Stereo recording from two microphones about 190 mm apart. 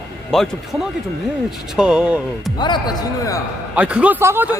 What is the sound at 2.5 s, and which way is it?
Speech, 25° left (ahead or behind).